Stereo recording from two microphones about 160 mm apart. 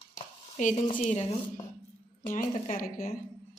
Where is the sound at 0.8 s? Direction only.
50° left (ahead or behind).